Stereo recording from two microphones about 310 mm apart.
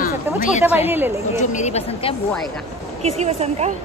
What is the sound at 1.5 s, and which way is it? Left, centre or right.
Speech, left.